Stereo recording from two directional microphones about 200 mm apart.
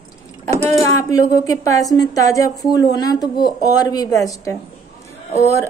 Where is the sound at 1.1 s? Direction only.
15° left (ahead or behind).